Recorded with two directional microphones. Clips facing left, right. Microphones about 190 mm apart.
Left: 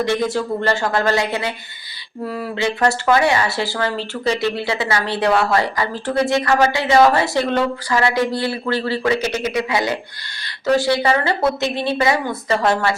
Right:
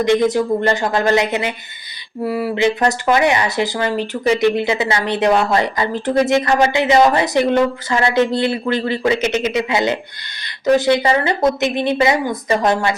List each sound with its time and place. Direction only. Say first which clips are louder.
0.0 s speech: right 5 dB; 20° right (ahead or behind)